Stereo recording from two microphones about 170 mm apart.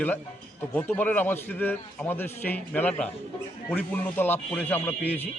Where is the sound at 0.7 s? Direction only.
10° left (ahead or behind).